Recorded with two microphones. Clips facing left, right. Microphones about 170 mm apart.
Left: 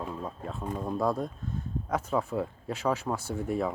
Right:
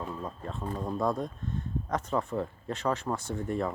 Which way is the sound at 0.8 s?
5° left (ahead or behind).